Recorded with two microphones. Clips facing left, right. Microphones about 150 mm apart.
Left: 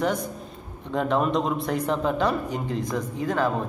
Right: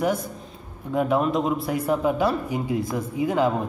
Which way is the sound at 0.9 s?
5° right (ahead or behind).